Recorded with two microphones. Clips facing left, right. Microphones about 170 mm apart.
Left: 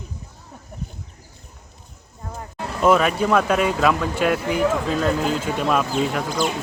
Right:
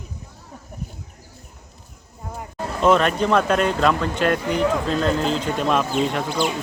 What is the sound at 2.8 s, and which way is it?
Speech, 5° left (ahead or behind).